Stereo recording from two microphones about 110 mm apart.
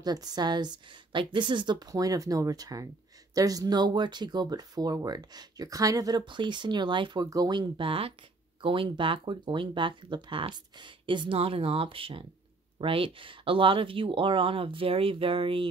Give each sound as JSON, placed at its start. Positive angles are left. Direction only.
{"t": 0.0, "sound": "speech", "side_deg": -35}